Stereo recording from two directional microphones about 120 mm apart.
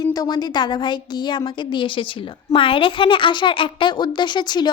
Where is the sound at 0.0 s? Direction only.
30° left (ahead or behind).